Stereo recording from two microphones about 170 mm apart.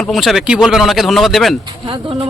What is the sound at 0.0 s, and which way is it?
Speech, centre (ahead or behind).